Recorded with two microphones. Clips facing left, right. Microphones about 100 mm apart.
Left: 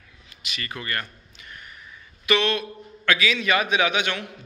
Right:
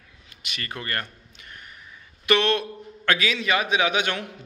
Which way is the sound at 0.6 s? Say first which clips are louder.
Even; 40° right (ahead or behind).